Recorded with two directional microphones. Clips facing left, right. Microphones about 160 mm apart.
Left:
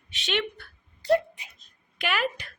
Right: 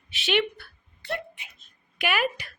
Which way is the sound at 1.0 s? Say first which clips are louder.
Left 11 dB; 35° left (ahead or behind).